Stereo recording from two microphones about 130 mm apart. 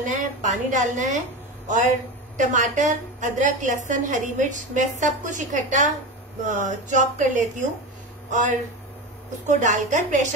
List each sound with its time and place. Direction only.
0.0 s a woman's voice: 75° right (ahead or behind)
2.3 s a woman's voice: 80° right